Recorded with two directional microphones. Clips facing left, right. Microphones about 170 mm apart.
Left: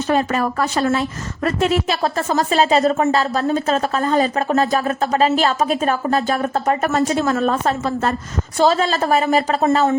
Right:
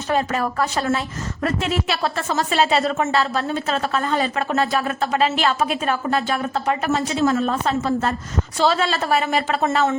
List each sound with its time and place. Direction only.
0.1 s a woman's voice: 50° left (ahead or behind); by 9.9 s 35° left (ahead or behind)